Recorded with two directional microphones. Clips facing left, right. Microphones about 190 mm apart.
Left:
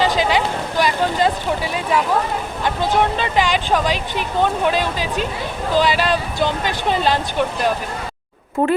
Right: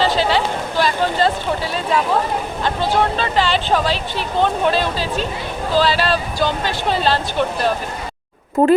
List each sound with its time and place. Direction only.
0.0 s a sound: 15° left (ahead or behind)
2.6 s speech: 15° left (ahead or behind)
8.6 s a woman's voice: 40° right (ahead or behind)